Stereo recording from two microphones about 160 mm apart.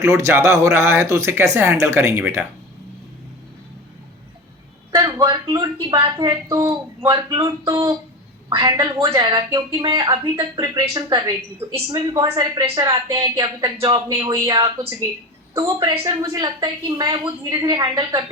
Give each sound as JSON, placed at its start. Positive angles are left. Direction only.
{"t": 0.0, "sound": "speech", "side_deg": -20}
{"t": 4.9, "sound": "a sound", "side_deg": -20}
{"t": 5.9, "sound": "speech", "side_deg": -25}